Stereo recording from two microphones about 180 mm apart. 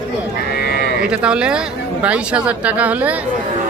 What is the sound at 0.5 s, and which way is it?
Livestock, 60° left (ahead or behind).